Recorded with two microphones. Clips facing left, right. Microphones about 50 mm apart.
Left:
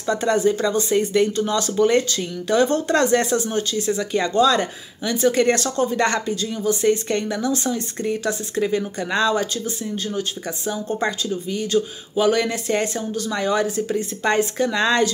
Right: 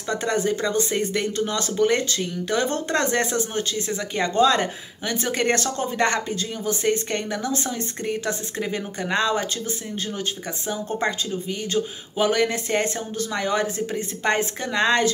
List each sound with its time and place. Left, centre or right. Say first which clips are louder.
0.2 s speech: left 4 dB; right